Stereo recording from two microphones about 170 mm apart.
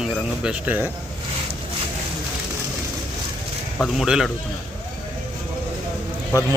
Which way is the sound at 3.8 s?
5° right (ahead or behind).